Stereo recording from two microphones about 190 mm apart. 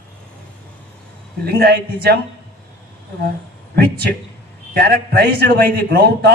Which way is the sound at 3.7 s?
55° right (ahead or behind).